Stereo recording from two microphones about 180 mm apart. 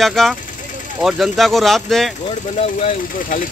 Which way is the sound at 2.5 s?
35° left (ahead or behind).